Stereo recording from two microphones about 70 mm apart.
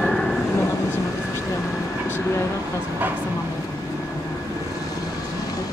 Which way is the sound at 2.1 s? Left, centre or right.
Left.